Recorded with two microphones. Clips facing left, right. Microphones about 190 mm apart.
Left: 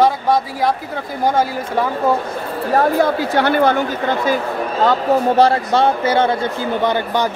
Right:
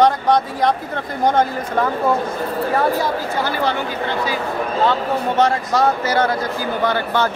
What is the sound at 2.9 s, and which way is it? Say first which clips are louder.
Speech: left 5 dB; 60° left (ahead or behind).